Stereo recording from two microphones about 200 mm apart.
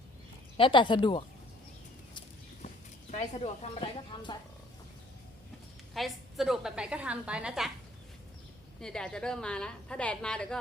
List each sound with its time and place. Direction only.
0.5 s speech: 25° left (ahead or behind)
3.1 s speech: 35° left (ahead or behind)
5.9 s a woman's voice: centre (ahead or behind)
8.8 s a woman's voice: 5° left (ahead or behind)